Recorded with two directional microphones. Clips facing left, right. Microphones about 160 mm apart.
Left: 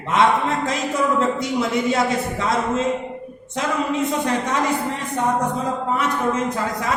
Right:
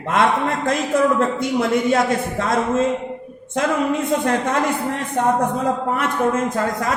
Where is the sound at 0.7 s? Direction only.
55° right (ahead or behind).